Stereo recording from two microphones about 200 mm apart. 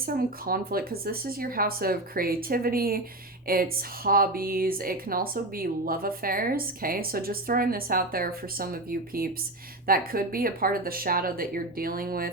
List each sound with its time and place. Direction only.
0.0 s speech: 45° right (ahead or behind)